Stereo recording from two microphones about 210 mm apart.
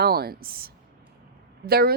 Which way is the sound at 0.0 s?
45° right (ahead or behind).